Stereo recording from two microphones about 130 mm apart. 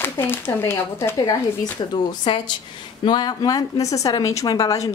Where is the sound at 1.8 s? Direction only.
35° left (ahead or behind).